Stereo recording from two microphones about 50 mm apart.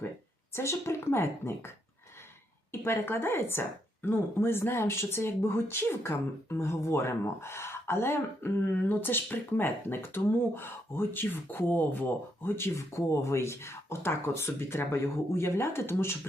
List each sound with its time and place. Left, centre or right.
0.5 s speech: left
2.8 s speech: left
8.7 s speech: left
12.9 s speech: left